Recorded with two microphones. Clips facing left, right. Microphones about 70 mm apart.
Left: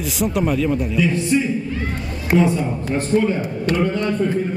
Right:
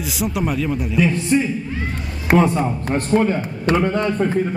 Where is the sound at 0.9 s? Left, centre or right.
Right.